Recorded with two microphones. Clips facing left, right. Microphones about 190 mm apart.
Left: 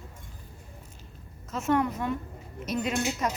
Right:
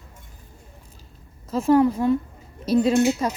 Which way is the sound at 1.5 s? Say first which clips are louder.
Right 9 dB; 30° right (ahead or behind).